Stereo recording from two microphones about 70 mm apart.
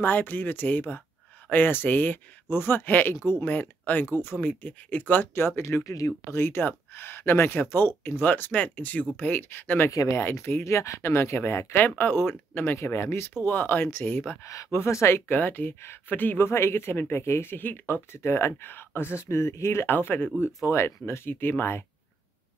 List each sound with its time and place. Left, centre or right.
0.0 s speech: left
5.6 s speech: left
6.3 s speech: left
9.8 s speech: left
10.1 s speech: left
12.7 s speech: left
14.4 s speech: left
14.7 s speech: left
18.1 s speech: left